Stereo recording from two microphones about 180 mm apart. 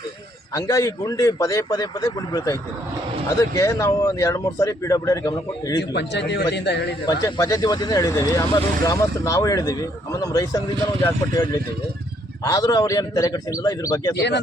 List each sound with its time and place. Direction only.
0.5 s speech: 15° left (ahead or behind)
5.9 s a man's voice: 70° left (ahead or behind)
7.0 s speech: 20° left (ahead or behind)
14.2 s a man's voice: 70° left (ahead or behind)